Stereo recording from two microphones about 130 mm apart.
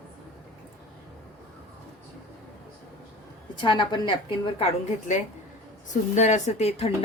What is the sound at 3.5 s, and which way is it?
Speech, 40° left (ahead or behind).